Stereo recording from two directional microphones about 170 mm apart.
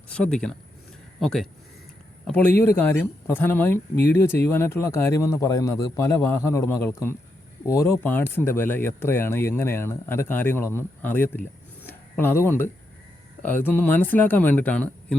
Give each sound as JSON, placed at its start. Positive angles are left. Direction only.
{"t": 0.1, "sound": "speech", "side_deg": 5}